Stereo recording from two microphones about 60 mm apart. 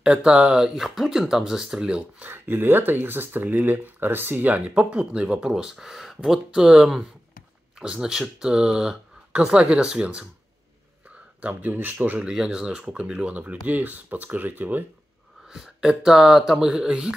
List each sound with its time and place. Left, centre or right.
0.0 s speech: centre
2.2 s speech: right
11.4 s speech: right
12.3 s speech: centre; by 14.9 s right
15.4 s speech: centre